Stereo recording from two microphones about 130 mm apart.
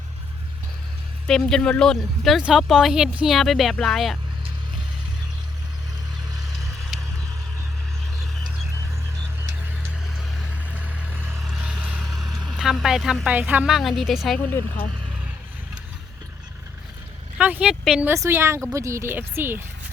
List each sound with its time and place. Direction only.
1.3 s speech: 5° left (ahead or behind)
6.9 s vehicle: centre (ahead or behind)
10.8 s vehicle: 10° right (ahead or behind)
11.3 s vehicle: centre (ahead or behind)
17.3 s speech: 10° right (ahead or behind)
18.0 s a woman's voice: 20° right (ahead or behind)